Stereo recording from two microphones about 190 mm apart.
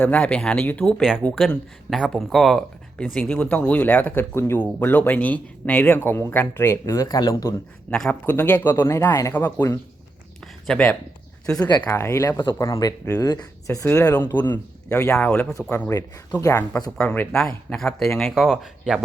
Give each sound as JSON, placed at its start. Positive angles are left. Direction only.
{"t": 0.0, "sound": "speech", "side_deg": 5}
{"t": 7.9, "sound": "speech", "side_deg": 5}
{"t": 10.4, "sound": "a sound", "side_deg": 5}
{"t": 11.4, "sound": "speech", "side_deg": 5}
{"t": 16.0, "sound": "speech", "side_deg": 20}